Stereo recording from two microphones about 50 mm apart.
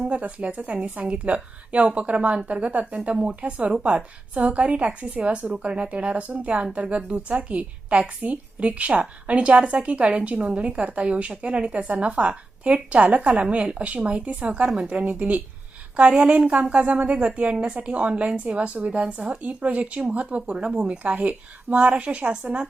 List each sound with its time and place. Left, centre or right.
0.0 s a woman's voice: right